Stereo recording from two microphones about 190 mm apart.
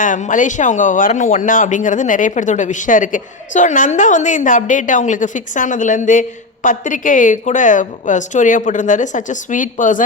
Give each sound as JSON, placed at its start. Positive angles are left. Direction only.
{"t": 0.0, "sound": "speech", "side_deg": 40}